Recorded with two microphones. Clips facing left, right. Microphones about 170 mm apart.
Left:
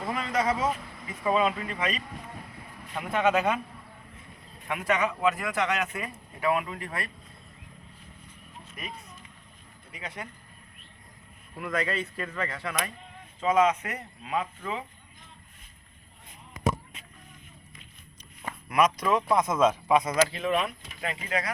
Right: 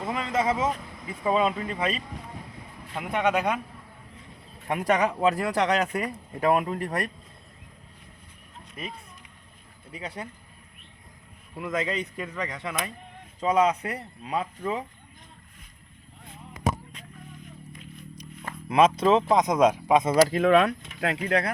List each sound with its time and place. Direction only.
0.0 s vehicle: 20° right (ahead or behind)
1.2 s speech: 25° right (ahead or behind)
2.9 s speech: 15° right (ahead or behind)
3.2 s speech: centre (ahead or behind)
4.7 s speech: 40° right (ahead or behind)
8.8 s speech: 25° right (ahead or behind)
11.5 s speech: 20° right (ahead or behind)
13.4 s speech: 35° right (ahead or behind)
18.7 s speech: 25° right (ahead or behind)
20.1 s speech: 40° right (ahead or behind)
20.4 s speech: 70° right (ahead or behind)